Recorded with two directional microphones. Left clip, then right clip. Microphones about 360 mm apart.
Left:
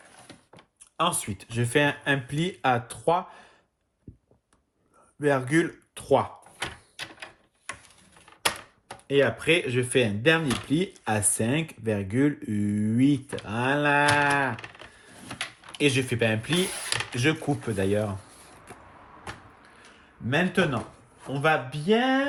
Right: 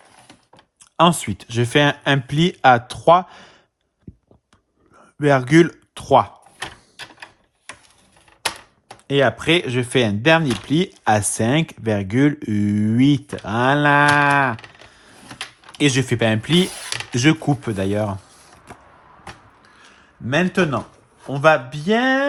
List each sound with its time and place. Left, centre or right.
0.9 s speech: right
5.2 s speech: right
9.0 s speech: centre
15.8 s speech: centre
20.2 s speech: centre